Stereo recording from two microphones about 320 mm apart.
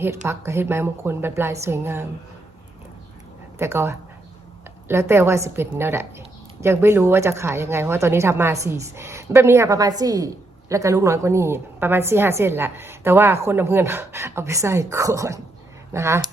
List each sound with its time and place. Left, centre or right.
0.0 s a woman's voice: centre
3.6 s a woman's voice: centre